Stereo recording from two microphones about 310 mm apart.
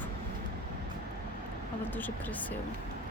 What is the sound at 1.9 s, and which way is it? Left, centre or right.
Speech, centre.